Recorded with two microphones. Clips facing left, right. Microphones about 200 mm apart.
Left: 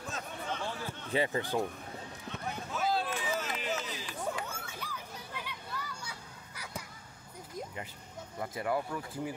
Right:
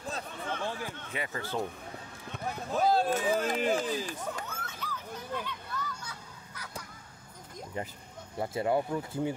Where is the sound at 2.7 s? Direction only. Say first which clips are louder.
Right 7 dB; 40° right (ahead or behind).